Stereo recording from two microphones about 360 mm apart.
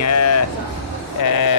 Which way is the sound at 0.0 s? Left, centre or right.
Left.